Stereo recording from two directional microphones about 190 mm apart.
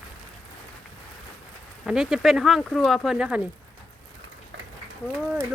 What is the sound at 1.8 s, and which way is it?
Speech, 5° right (ahead or behind).